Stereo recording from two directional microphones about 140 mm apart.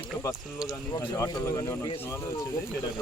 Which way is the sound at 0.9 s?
35° left (ahead or behind).